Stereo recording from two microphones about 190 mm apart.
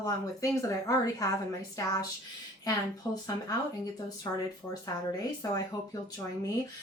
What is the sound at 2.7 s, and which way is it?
Speech, 20° left (ahead or behind).